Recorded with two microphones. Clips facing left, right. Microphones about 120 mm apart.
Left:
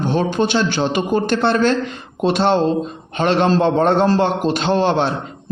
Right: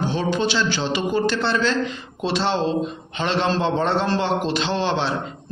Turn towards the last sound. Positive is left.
turn(degrees=50)  # may be behind; listen again after turning